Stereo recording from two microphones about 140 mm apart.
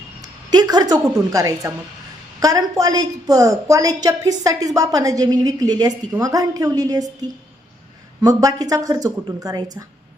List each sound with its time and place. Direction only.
0.2 s a woman's voice: 30° right (ahead or behind)